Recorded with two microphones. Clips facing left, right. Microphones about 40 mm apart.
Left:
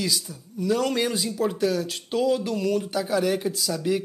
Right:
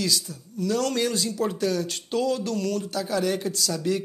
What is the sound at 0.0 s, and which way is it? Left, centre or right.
Speech, centre.